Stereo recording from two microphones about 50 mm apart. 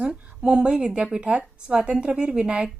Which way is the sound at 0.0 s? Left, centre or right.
Centre.